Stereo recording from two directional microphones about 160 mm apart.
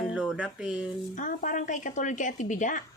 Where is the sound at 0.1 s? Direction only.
Centre (ahead or behind).